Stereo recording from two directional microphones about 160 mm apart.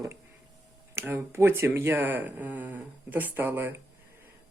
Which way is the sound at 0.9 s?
15° right (ahead or behind).